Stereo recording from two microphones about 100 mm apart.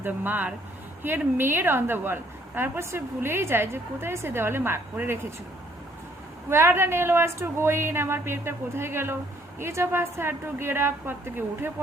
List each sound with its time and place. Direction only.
0.0 s a woman's voice: 20° right (ahead or behind)
6.5 s a woman's voice: 25° right (ahead or behind)